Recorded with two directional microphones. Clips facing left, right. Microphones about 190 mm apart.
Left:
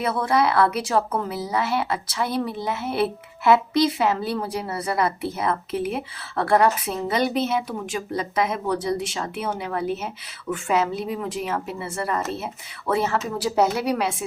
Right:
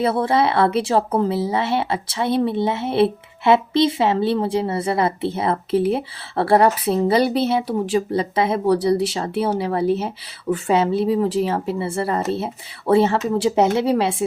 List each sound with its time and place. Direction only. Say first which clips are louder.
0.0 s speech: right 3 dB; 30° right (ahead or behind)